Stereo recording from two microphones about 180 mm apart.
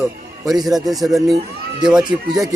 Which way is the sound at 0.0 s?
Centre (ahead or behind).